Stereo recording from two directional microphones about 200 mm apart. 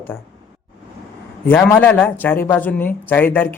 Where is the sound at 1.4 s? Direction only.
10° left (ahead or behind).